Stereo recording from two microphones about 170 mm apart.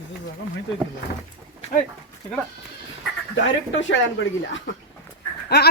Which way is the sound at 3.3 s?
90° left.